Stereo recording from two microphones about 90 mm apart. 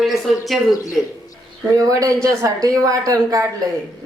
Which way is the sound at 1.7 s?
40° right (ahead or behind).